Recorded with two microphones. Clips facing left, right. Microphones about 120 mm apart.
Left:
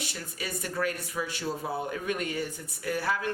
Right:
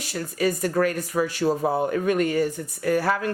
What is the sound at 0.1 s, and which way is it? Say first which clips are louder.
Speech: right 13 dB; 50° right (ahead or behind).